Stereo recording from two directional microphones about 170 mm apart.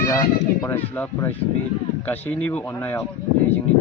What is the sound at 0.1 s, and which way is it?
Speech, 15° left (ahead or behind).